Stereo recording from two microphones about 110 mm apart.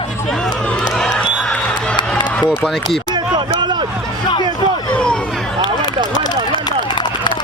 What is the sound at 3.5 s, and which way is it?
Hubbub, 45° right (ahead or behind).